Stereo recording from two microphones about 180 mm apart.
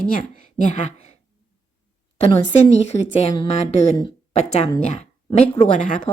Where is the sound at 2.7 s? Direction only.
35° left (ahead or behind).